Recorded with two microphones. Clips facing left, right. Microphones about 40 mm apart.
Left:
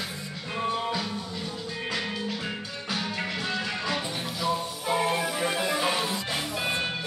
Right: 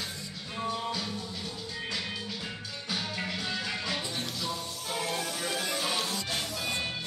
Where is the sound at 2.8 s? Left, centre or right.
Left.